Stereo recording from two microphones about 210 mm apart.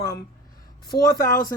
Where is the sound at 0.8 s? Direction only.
20° left (ahead or behind).